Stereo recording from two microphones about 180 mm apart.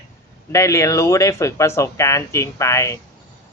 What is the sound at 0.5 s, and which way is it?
Speech, 15° left (ahead or behind).